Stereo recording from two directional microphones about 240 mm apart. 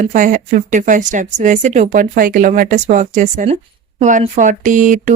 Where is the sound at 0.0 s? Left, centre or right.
Right.